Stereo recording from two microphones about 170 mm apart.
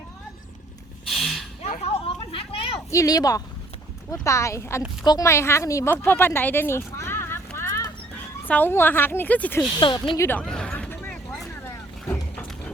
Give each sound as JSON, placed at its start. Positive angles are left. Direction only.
{"t": 1.0, "sound": "a sound", "side_deg": 0}
{"t": 1.6, "sound": "whip", "side_deg": 40}
{"t": 2.3, "sound": "a sound", "side_deg": 35}
{"t": 2.9, "sound": "speech", "side_deg": 20}
{"t": 9.8, "sound": "speech", "side_deg": 30}
{"t": 10.2, "sound": "speech", "side_deg": 10}
{"t": 10.4, "sound": "vehicle", "side_deg": 5}